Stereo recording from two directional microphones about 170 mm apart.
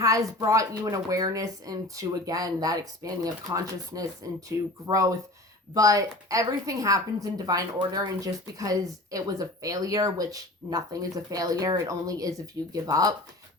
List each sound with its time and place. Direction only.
0.0 s a woman's voice: 20° right (ahead or behind)